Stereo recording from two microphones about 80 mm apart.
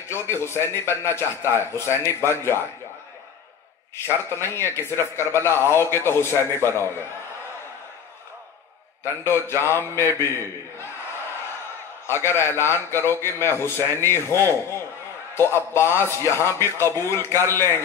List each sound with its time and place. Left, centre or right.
0.0 s a man's voice: left
3.9 s a man's voice: left
9.0 s a man's voice: left
12.1 s a man's voice: left